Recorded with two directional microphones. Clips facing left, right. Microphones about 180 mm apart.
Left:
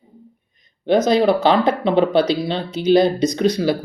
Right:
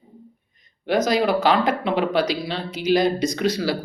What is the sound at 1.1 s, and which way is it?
Speech, 25° left (ahead or behind).